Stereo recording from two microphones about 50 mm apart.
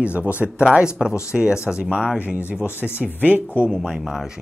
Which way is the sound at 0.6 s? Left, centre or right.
Centre.